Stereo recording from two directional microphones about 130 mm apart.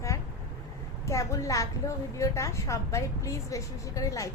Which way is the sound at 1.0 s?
25° left (ahead or behind).